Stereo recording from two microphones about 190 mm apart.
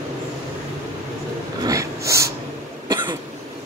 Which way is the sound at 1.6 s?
15° right (ahead or behind).